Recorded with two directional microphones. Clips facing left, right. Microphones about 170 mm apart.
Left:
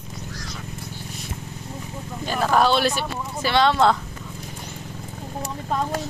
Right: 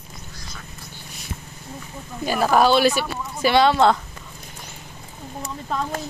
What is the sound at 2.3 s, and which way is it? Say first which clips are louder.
Speech: right 2 dB; 10° right (ahead or behind).